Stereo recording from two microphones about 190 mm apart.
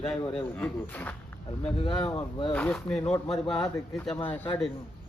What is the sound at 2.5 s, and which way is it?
A man's voice, 5° left (ahead or behind).